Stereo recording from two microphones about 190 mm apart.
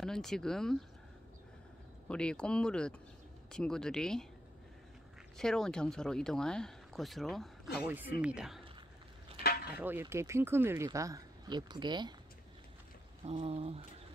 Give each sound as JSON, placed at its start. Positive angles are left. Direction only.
{"t": 0.0, "sound": "speech", "side_deg": 0}
{"t": 2.0, "sound": "speech", "side_deg": 5}
{"t": 5.4, "sound": "speech", "side_deg": 5}
{"t": 9.8, "sound": "speech", "side_deg": -10}
{"t": 13.2, "sound": "speech", "side_deg": -30}